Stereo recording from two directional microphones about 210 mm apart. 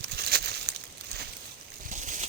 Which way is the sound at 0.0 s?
50° right (ahead or behind).